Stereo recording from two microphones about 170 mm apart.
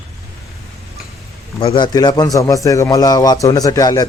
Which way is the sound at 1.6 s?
30° left (ahead or behind).